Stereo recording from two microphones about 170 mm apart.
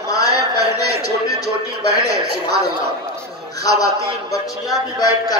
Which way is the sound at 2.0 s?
20° left (ahead or behind).